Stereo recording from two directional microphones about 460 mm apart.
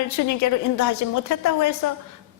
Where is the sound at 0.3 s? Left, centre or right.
Left.